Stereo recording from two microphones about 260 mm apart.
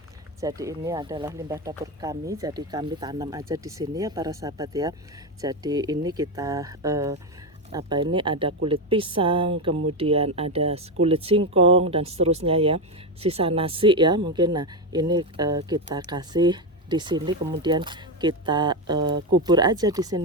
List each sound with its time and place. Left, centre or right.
0.3 s speech: centre